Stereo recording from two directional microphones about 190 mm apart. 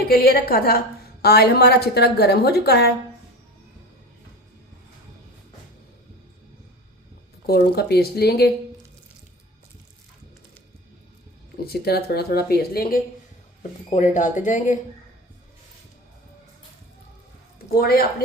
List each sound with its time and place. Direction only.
0.1 s a woman's voice: 55° left (ahead or behind)
7.4 s a woman's voice: 55° left (ahead or behind)
11.6 s a woman's voice: 55° left (ahead or behind)
14.1 s speech: 40° left (ahead or behind)
17.7 s a woman's voice: 55° left (ahead or behind)